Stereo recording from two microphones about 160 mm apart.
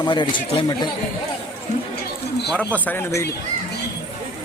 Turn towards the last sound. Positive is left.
turn(degrees=15)  # may be behind; listen again after turning